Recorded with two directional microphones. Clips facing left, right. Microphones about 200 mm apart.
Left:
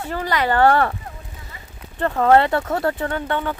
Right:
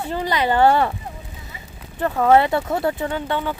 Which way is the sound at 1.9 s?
5° right (ahead or behind).